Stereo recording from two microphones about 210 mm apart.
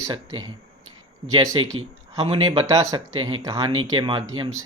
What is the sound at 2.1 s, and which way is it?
A man's voice, 25° right (ahead or behind).